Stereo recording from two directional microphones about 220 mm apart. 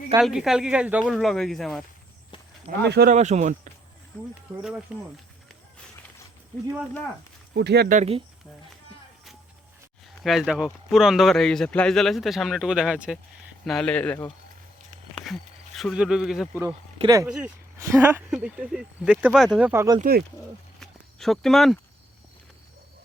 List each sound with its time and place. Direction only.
0.2 s a man's voice: centre (ahead or behind)
2.8 s speech: 45° right (ahead or behind)
3.2 s speech: 30° right (ahead or behind)
4.6 s a man's voice: 5° right (ahead or behind)
7.5 s speech: 50° right (ahead or behind)
7.9 s speech: 25° right (ahead or behind)
10.2 s a man's voice: centre (ahead or behind)
15.1 s a sound: centre (ahead or behind)
17.0 s speech: 15° right (ahead or behind)
17.2 s a man's voice: 5° right (ahead or behind)
20.0 s speech: 45° right (ahead or behind)
20.8 s a sound: centre (ahead or behind)